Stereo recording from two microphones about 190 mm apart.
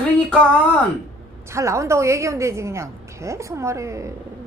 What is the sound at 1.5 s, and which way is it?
A woman's voice, 15° right (ahead or behind).